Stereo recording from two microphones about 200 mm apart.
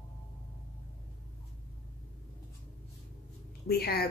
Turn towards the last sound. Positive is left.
turn(degrees=50)  # may be behind; listen again after turning